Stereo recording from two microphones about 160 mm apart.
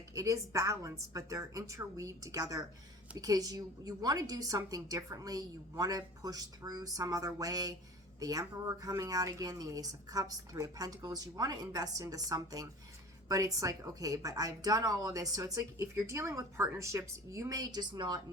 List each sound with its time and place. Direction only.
0.1 s speech: 20° right (ahead or behind)